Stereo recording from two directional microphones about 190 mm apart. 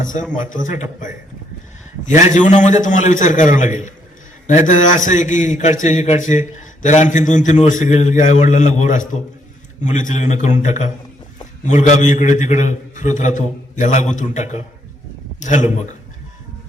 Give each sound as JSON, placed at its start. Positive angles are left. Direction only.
{"t": 0.1, "sound": "a man's voice", "side_deg": 45}
{"t": 2.3, "sound": "a man's voice", "side_deg": 40}